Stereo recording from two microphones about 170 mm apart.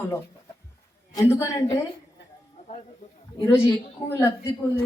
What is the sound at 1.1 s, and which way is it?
Speech, 15° left (ahead or behind).